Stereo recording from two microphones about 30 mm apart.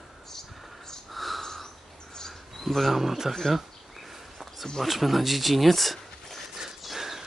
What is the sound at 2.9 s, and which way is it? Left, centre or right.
Speech, centre.